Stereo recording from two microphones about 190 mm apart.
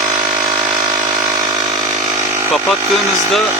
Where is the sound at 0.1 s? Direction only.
20° right (ahead or behind).